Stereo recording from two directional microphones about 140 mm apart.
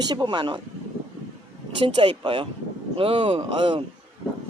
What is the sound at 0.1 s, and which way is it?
Speech, 30° right (ahead or behind).